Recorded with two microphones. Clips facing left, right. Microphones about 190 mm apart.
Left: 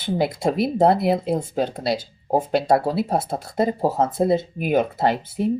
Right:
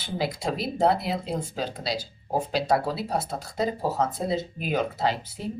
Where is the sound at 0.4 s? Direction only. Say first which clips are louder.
Left 6 dB; 55° left (ahead or behind).